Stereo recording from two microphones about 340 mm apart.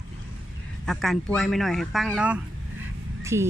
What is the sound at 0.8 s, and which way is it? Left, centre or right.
Speech, centre.